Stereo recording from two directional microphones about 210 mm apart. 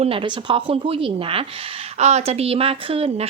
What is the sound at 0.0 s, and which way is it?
Speech, 25° right (ahead or behind).